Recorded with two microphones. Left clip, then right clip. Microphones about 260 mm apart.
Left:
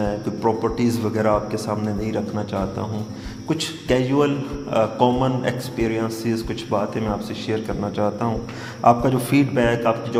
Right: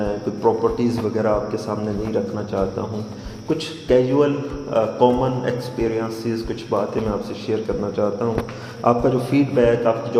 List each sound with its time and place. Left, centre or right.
0.0 s speech: left
3.8 s speech: left